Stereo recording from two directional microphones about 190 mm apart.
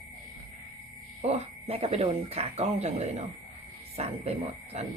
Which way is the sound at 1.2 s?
35° right (ahead or behind).